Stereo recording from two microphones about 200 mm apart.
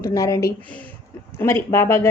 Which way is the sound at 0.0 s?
15° left (ahead or behind).